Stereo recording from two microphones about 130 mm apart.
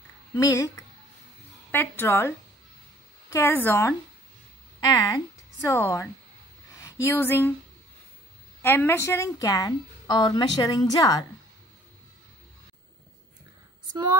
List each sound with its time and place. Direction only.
0.4 s a woman's voice: 25° left (ahead or behind)
4.7 s a woman's voice: 30° left (ahead or behind)
6.7 s a sound: 25° left (ahead or behind)
7.1 s speech: 20° left (ahead or behind)
8.6 s a woman's voice: 15° left (ahead or behind)